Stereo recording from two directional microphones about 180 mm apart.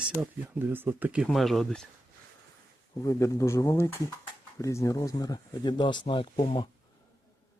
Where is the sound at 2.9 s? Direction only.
20° left (ahead or behind).